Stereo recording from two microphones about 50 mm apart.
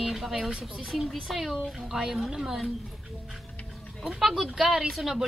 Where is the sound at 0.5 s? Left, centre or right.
Centre.